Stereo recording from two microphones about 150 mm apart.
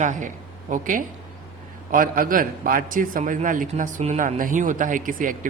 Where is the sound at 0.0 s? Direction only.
55° right (ahead or behind).